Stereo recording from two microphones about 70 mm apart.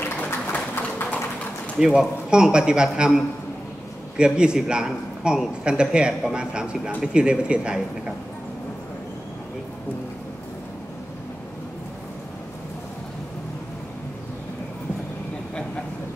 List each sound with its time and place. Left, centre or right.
0.5 s a sound: left
1.8 s speech: centre
4.2 s speech: centre